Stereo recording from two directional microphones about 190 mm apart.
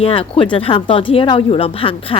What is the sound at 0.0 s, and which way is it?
A woman's voice, 30° left (ahead or behind).